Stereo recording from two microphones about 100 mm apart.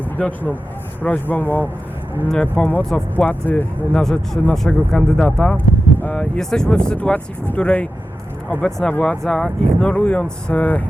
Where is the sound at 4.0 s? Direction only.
5° left (ahead or behind).